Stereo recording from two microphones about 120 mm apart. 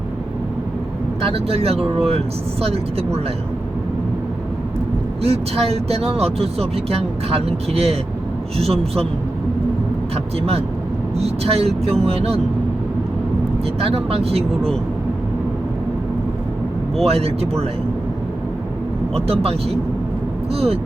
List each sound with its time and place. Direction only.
1.3 s speech: 55° right (ahead or behind)
5.2 s speech: 55° right (ahead or behind)
11.4 s speech: 55° right (ahead or behind)
13.7 s speech: 55° right (ahead or behind)
17.0 s speech: 55° right (ahead or behind)
19.1 s speech: 55° right (ahead or behind)